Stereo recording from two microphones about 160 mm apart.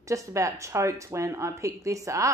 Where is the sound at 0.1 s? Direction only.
20° right (ahead or behind).